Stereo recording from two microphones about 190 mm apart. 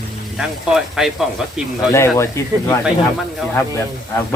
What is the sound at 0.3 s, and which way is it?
Speech, centre (ahead or behind).